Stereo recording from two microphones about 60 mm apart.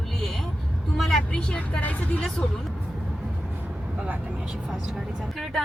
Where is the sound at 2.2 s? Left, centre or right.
Centre.